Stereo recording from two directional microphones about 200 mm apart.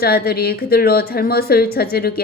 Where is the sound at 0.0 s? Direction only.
50° left (ahead or behind).